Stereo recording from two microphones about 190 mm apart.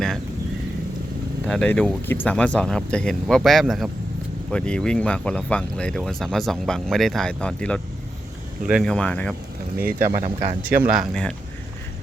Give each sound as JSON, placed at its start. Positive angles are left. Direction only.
{"t": 1.5, "sound": "speech", "side_deg": 5}
{"t": 10.1, "sound": "speech", "side_deg": -40}
{"t": 11.1, "sound": "speech", "side_deg": 5}